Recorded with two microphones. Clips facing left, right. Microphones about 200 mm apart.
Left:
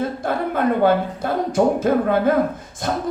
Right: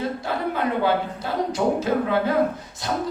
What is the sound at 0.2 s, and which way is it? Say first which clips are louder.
A woman's voice: left 4 dB; 50° left (ahead or behind).